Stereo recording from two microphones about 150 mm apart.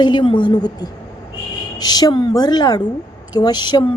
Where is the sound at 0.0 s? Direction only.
30° left (ahead or behind).